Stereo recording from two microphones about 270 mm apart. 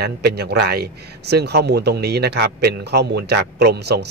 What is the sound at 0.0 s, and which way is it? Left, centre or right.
A man's voice, right.